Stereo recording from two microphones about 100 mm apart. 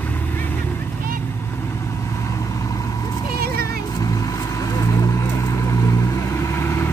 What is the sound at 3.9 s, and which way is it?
Vehicle, 35° left (ahead or behind).